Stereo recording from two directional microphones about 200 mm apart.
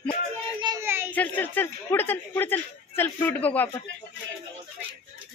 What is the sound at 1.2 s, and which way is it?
Speech, 10° left (ahead or behind).